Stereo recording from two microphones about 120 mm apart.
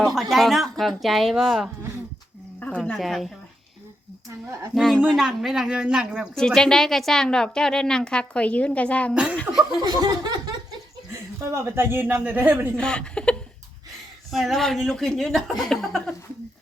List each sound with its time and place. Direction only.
0.0 s a woman's voice: centre (ahead or behind)
2.6 s speech: 10° left (ahead or behind)
4.3 s speech: 25° right (ahead or behind)
4.7 s a woman's voice: centre (ahead or behind)
6.3 s a woman's voice: 5° left (ahead or behind)
9.5 s speech: 10° right (ahead or behind)
9.8 s a sound: 35° right (ahead or behind)
11.4 s speech: 20° right (ahead or behind)
12.7 s a woman's voice: 5° left (ahead or behind)